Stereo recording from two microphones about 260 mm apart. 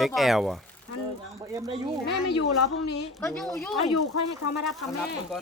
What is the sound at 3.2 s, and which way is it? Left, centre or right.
Speech, centre.